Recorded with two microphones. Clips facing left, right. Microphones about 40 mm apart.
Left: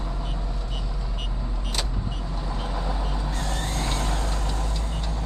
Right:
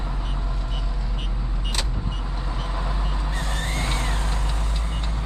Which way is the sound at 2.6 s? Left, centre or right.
Centre.